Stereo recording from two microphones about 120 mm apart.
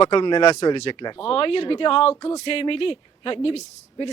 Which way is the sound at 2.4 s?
50° left (ahead or behind).